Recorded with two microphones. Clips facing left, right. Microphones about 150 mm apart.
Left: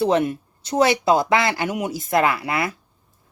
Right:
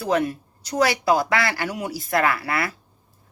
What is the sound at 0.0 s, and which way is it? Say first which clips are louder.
A woman's voice: left 3 dB; 25° left (ahead or behind).